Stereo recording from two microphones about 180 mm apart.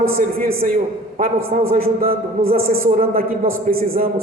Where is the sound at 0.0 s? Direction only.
55° right (ahead or behind).